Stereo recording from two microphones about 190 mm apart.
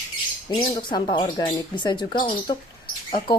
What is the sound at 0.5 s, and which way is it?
Speech, 25° left (ahead or behind).